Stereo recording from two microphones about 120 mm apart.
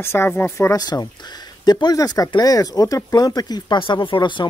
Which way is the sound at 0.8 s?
35° left (ahead or behind).